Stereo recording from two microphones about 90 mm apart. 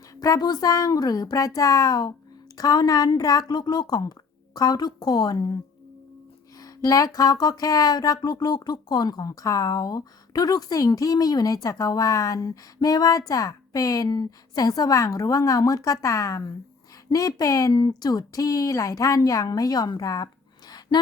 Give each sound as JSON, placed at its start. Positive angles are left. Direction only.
{"t": 0.1, "sound": "music", "side_deg": 45}
{"t": 6.6, "sound": "music", "side_deg": 45}
{"t": 17.1, "sound": "speech", "side_deg": 40}
{"t": 20.0, "sound": "a sound", "side_deg": 40}